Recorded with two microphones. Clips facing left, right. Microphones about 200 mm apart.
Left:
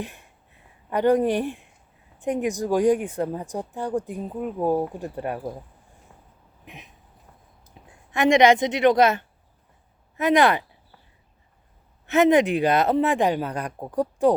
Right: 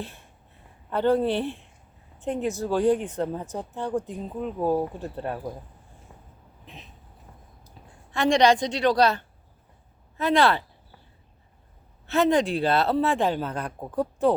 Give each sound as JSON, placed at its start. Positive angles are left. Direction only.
{"t": 0.0, "sound": "speech", "side_deg": 15}
{"t": 6.7, "sound": "a sound", "side_deg": 15}
{"t": 8.1, "sound": "speech", "side_deg": 20}
{"t": 12.0, "sound": "speech", "side_deg": 20}